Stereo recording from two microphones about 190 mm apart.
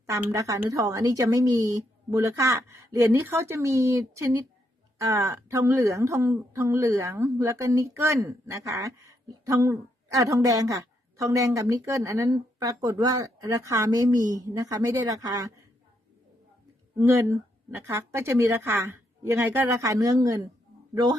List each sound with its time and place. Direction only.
0.0 s a woman's voice: 15° right (ahead or behind)
17.0 s a woman's voice: 15° right (ahead or behind)